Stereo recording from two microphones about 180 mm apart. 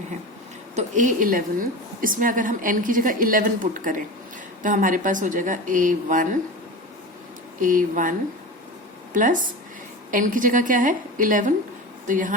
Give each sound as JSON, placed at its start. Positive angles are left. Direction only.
{"t": 0.8, "sound": "a woman's voice", "side_deg": -45}
{"t": 7.6, "sound": "a woman's voice", "side_deg": -50}
{"t": 9.1, "sound": "a woman's voice", "side_deg": -45}